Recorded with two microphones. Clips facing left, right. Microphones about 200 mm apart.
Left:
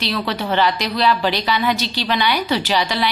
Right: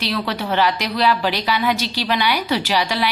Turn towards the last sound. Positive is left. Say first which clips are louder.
# left 1 dB
turn(degrees=-10)  # may be behind; listen again after turning